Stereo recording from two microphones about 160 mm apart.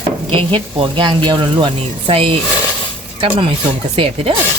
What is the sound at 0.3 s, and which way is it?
Speech, 35° right (ahead or behind).